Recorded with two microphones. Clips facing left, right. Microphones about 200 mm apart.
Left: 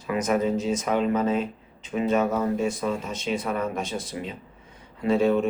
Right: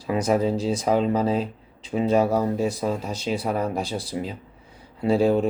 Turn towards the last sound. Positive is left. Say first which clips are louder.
# right 2 dB
turn(degrees=-35)  # may be behind; listen again after turning